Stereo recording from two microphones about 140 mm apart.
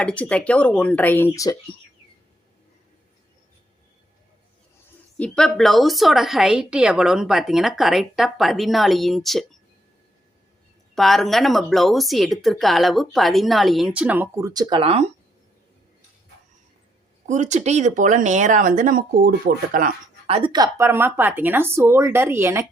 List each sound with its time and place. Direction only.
0.0 s speech: 10° left (ahead or behind)
5.1 s a woman's voice: 5° left (ahead or behind)
10.9 s a woman's voice: centre (ahead or behind)
14.4 s speech: 30° right (ahead or behind)
17.2 s speech: 60° right (ahead or behind)
18.8 s speech: 80° right
20.2 s a woman's voice: 45° right (ahead or behind)
20.5 s speech: 25° right (ahead or behind)